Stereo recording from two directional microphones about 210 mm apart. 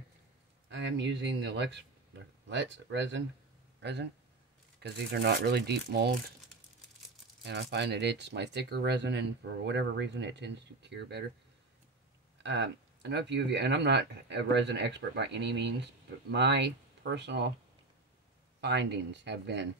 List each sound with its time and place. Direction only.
0.7 s speech: 60° right (ahead or behind)
7.4 s speech: 55° right (ahead or behind)
12.4 s speech: 55° right (ahead or behind)
18.6 s speech: 55° right (ahead or behind)